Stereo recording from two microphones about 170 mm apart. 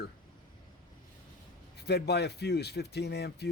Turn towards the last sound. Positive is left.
turn(degrees=75)  # may be behind; listen again after turning